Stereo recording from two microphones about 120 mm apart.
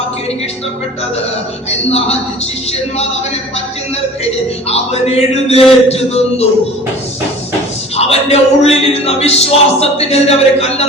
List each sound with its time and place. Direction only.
1.9 s a man's voice: 60° left (ahead or behind)
4.7 s a man's voice: 60° left (ahead or behind)
7.9 s a man's voice: 60° left (ahead or behind)